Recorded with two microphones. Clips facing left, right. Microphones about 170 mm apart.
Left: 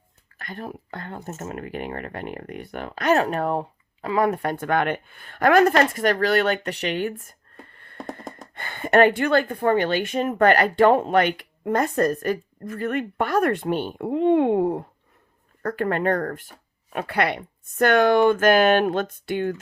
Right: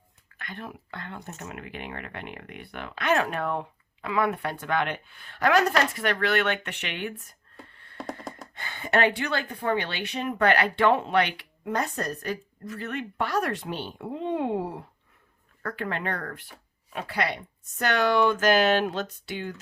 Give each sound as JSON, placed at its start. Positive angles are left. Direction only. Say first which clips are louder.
{"t": 0.3, "sound": "speech", "louder": "left 5 dB", "side_deg": 40}